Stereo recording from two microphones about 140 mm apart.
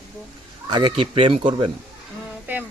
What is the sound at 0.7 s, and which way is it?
A man's voice, 35° right (ahead or behind).